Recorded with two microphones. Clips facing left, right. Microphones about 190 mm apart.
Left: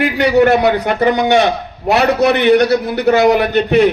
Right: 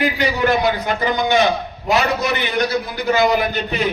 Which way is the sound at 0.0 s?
65° left (ahead or behind).